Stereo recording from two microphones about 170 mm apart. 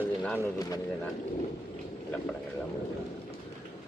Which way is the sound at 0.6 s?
20° left (ahead or behind).